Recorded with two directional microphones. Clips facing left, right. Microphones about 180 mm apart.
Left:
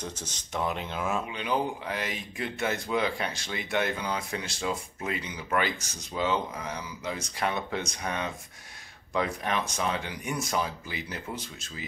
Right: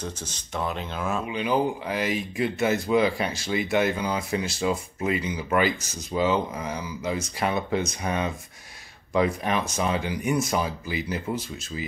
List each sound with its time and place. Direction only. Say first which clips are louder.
0.0 s speech: right 3 dB; 20° left (ahead or behind)
1.3 s speech: right 5 dB; 5° right (ahead or behind)